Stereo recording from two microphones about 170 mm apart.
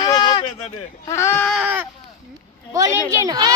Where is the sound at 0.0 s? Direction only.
25° left (ahead or behind).